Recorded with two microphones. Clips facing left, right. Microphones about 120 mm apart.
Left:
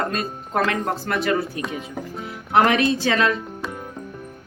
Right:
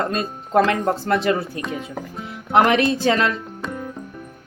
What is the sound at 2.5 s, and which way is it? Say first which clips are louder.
Speech: right 1 dB; 25° right (ahead or behind).